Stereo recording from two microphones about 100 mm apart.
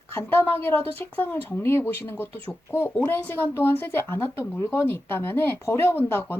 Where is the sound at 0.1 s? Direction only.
25° left (ahead or behind).